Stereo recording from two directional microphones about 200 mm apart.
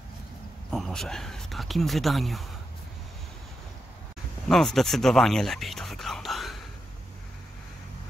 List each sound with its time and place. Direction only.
0.7 s speech: centre (ahead or behind)
4.5 s whispering: centre (ahead or behind)